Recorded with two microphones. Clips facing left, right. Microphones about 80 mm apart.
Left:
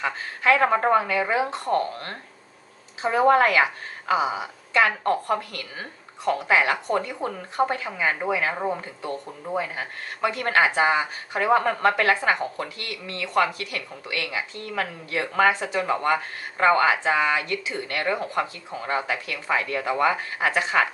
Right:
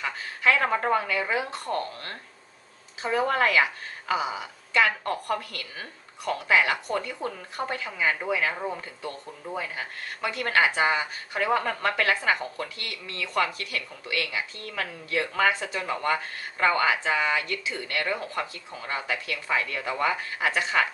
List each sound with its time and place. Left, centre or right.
0.0 s a woman's voice: left